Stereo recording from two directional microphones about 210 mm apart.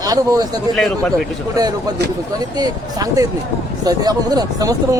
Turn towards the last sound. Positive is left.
turn(degrees=-15)  # may be behind; listen again after turning